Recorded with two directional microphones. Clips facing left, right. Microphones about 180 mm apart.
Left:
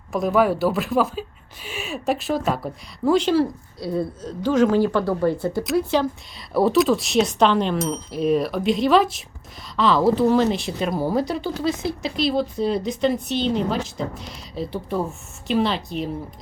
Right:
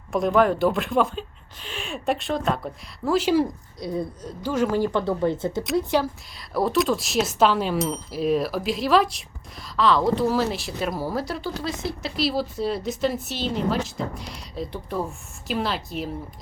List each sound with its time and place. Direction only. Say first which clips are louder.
0.1 s speech: even; 5° left (ahead or behind); by 6.1 s 15° right (ahead or behind)
6.5 s speech: left 4 dB; centre (ahead or behind)